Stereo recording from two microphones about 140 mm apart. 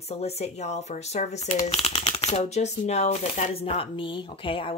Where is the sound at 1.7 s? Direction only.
45° left (ahead or behind).